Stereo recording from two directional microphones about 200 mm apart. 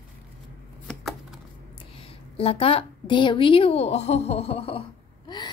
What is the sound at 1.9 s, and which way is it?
A woman's voice, 25° left (ahead or behind).